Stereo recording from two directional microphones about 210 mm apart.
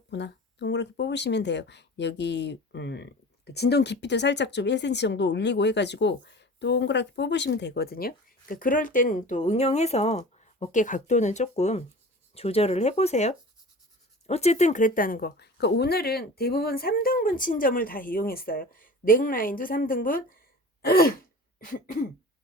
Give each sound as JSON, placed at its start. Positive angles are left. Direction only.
{"t": 0.1, "sound": "a woman's voice", "side_deg": 55}